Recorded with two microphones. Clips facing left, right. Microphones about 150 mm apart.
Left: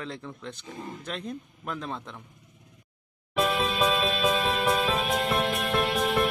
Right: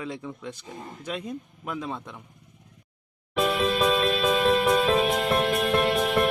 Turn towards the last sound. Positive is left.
turn(degrees=0)  # may be behind; listen again after turning